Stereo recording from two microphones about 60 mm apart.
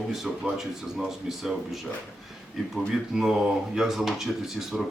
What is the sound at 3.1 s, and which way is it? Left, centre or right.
Speech, centre.